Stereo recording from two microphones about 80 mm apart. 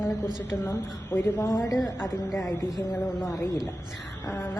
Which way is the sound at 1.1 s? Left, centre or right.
Left.